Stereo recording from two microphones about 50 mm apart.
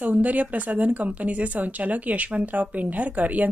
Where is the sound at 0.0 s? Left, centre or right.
Right.